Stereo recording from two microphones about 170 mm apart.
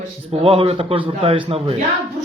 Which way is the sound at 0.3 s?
35° right (ahead or behind).